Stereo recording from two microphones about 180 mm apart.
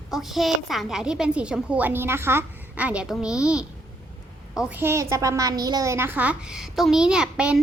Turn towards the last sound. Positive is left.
turn(degrees=-5)  # may be behind; listen again after turning